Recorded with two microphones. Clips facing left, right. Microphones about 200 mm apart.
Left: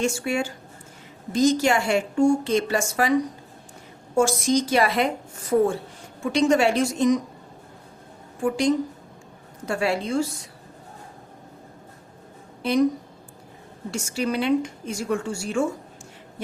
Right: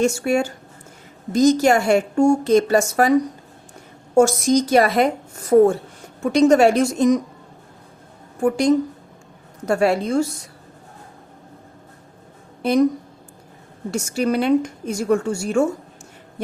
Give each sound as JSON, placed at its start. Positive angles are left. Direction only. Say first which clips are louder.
{"t": 0.2, "sound": "a woman's voice", "louder": "right 6 dB", "side_deg": -45}
{"t": 8.4, "sound": "a woman's voice", "louder": "right 5 dB", "side_deg": -45}
{"t": 13.9, "sound": "a woman's voice", "louder": "right 5 dB", "side_deg": -45}